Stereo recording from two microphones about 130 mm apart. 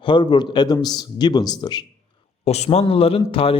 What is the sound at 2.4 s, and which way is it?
Speech, 55° left (ahead or behind).